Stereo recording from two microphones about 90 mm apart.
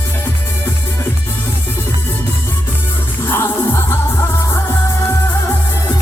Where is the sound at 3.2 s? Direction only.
30° left (ahead or behind).